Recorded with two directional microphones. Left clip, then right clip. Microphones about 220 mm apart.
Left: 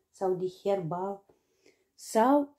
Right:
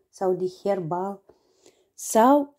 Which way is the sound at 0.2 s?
45° right (ahead or behind).